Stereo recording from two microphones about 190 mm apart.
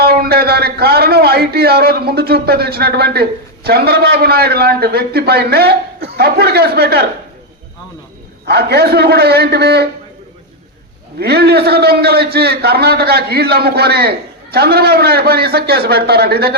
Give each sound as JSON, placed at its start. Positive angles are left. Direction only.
{"t": 0.0, "sound": "a man's voice", "side_deg": -55}
{"t": 8.4, "sound": "a man's voice", "side_deg": -60}
{"t": 11.2, "sound": "a man's voice", "side_deg": -55}